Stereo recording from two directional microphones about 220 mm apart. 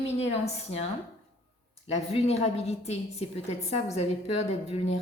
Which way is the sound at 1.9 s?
30° left (ahead or behind).